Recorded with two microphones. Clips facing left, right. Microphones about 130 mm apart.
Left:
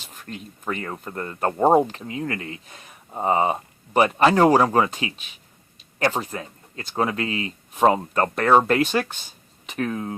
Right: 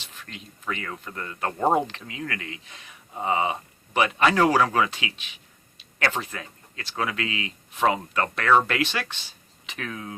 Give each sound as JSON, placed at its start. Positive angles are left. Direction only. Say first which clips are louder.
{"t": 0.0, "sound": "speech", "louder": "left 6 dB", "side_deg": 45}
{"t": 1.5, "sound": "speech", "louder": "left 5 dB", "side_deg": 30}